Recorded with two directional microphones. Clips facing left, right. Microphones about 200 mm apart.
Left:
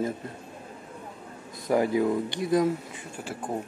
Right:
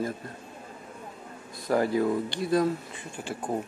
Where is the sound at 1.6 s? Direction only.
15° left (ahead or behind).